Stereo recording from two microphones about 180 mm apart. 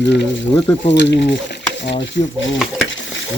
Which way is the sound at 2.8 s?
90° left.